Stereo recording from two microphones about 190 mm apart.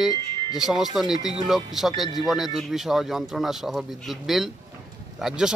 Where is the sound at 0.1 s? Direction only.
20° left (ahead or behind).